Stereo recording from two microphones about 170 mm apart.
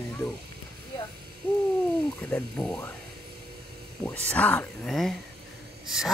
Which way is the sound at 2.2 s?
5° left (ahead or behind).